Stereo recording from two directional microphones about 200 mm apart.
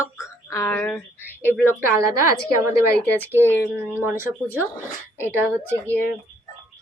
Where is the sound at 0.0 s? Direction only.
15° left (ahead or behind).